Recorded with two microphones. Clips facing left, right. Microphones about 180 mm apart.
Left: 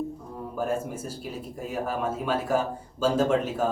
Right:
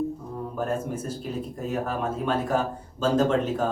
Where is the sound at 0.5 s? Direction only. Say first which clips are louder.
Even; 5° left (ahead or behind).